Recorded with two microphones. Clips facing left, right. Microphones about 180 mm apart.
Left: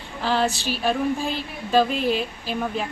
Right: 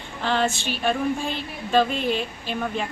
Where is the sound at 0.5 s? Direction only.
35° left (ahead or behind).